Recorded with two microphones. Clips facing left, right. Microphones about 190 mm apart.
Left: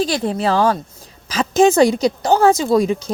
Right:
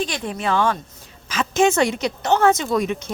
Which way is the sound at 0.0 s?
35° left (ahead or behind).